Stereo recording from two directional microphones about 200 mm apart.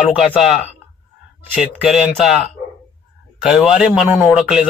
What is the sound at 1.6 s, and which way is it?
Speech, 5° right (ahead or behind).